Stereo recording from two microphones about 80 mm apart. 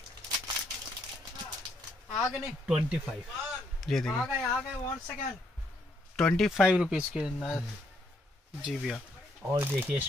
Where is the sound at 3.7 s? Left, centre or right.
Centre.